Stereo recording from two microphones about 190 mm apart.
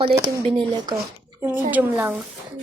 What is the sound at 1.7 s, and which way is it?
Speech, 10° right (ahead or behind).